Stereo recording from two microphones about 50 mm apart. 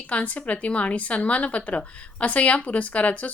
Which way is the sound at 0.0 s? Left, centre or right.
Left.